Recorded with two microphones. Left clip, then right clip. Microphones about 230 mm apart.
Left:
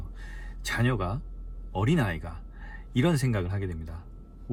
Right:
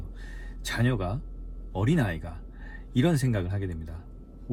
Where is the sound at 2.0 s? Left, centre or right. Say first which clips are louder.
Even; centre.